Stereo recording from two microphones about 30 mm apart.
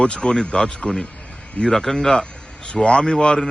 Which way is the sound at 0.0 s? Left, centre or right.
Left.